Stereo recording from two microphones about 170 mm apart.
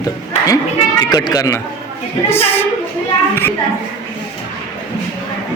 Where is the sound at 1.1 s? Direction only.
20° left (ahead or behind).